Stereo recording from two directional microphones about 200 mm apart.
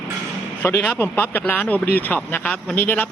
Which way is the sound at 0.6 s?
10° left (ahead or behind).